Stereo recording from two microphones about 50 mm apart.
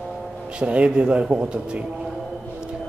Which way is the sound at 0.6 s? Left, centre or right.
Right.